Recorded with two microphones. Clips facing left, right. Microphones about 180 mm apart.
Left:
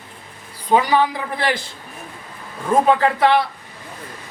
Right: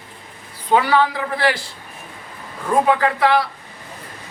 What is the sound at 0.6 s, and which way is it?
Speech, 15° left (ahead or behind).